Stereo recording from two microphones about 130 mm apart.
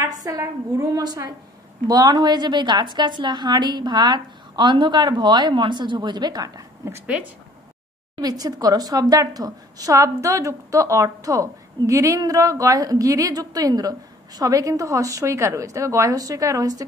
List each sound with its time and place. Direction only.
0.0 s a woman's voice: 25° right (ahead or behind)
8.2 s a woman's voice: 30° right (ahead or behind)